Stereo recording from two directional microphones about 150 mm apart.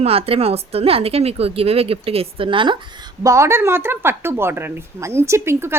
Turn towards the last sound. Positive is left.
turn(degrees=-15)  # may be behind; listen again after turning